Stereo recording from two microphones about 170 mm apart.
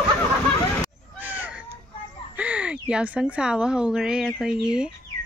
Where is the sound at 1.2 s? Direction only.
10° right (ahead or behind).